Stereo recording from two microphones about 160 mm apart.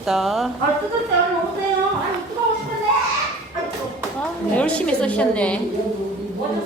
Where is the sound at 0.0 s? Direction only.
Centre (ahead or behind).